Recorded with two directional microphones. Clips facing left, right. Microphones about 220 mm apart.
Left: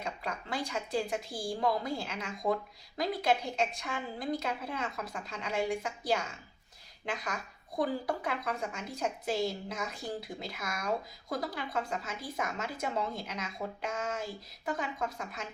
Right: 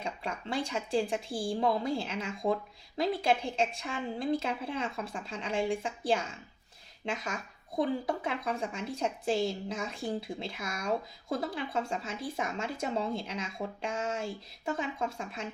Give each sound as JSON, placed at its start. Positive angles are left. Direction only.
{"t": 0.0, "sound": "speech", "side_deg": -30}